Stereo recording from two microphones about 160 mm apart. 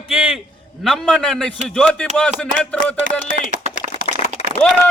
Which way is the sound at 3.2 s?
55° right (ahead or behind).